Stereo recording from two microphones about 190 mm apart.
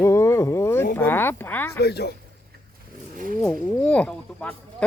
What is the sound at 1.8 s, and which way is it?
Speech, 60° left (ahead or behind).